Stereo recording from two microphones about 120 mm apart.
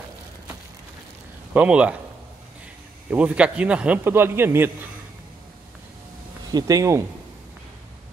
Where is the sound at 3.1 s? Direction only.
10° right (ahead or behind).